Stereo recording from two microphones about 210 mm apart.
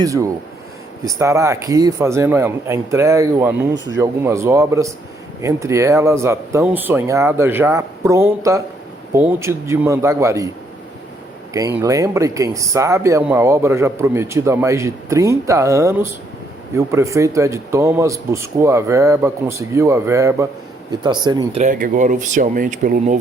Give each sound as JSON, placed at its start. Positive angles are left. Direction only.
{"t": 0.0, "sound": "speech", "side_deg": -15}
{"t": 11.8, "sound": "speech", "side_deg": -15}
{"t": 21.6, "sound": "speech", "side_deg": -35}